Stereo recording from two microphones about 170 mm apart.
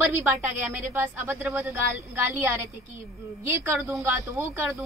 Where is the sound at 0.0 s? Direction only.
10° right (ahead or behind).